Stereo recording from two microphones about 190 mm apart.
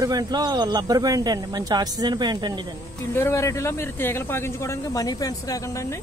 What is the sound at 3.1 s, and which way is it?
Speech, 15° left (ahead or behind).